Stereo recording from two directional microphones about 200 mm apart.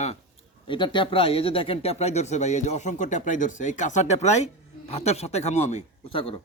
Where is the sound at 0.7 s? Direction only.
25° left (ahead or behind).